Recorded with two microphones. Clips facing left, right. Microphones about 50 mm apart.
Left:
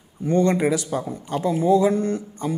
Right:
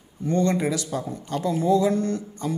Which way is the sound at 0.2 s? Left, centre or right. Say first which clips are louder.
Left 3 dB; centre.